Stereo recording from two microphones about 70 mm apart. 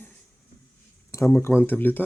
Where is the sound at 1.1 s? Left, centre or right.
Left.